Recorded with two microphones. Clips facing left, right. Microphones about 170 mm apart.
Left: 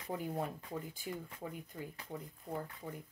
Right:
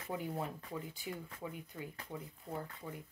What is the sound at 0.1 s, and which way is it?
Speech, 45° left (ahead or behind).